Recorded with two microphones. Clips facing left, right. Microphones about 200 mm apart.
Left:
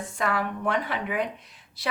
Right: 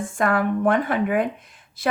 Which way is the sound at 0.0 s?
50° right (ahead or behind).